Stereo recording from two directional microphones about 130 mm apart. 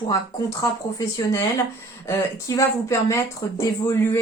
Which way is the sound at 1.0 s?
30° left (ahead or behind).